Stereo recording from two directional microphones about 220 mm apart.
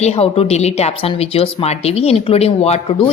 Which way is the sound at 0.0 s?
25° left (ahead or behind).